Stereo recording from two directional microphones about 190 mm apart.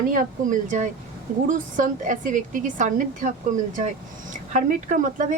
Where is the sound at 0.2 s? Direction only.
40° right (ahead or behind).